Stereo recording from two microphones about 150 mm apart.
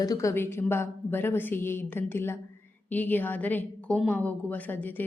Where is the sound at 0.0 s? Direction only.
25° left (ahead or behind).